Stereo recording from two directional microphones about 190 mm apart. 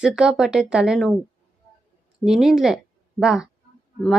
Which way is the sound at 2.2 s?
Centre (ahead or behind).